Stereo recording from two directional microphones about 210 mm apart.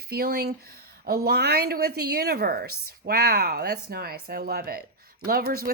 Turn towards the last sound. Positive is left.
turn(degrees=-45)  # may be behind; listen again after turning